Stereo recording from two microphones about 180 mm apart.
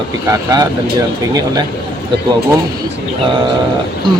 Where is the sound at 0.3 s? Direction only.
20° right (ahead or behind).